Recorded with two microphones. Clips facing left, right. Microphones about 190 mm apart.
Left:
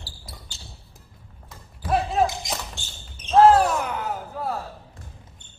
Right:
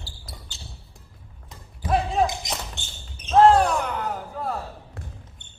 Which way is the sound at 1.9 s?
Centre (ahead or behind).